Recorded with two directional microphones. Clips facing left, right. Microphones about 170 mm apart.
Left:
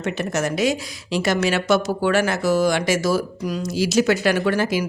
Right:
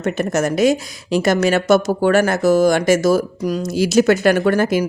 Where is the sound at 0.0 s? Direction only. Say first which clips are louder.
Right 5 dB; 50° right (ahead or behind).